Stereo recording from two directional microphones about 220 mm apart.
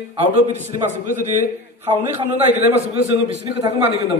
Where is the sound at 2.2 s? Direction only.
30° right (ahead or behind).